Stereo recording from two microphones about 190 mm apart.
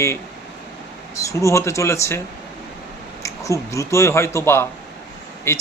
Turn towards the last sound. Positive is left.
turn(degrees=15)  # may be behind; listen again after turning